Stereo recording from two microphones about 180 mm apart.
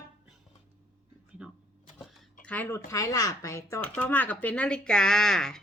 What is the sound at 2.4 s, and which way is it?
Speech, 10° left (ahead or behind).